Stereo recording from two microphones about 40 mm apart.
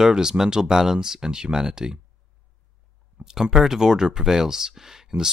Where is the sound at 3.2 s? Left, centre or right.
Centre.